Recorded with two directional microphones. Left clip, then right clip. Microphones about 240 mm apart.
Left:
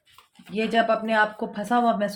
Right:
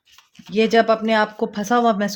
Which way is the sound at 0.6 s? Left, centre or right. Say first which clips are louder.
Right 6 dB; right.